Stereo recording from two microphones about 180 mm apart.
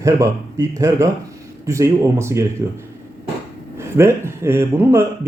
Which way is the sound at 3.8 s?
15° right (ahead or behind).